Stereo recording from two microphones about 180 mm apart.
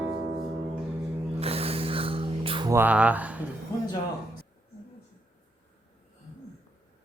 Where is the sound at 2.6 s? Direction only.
10° right (ahead or behind).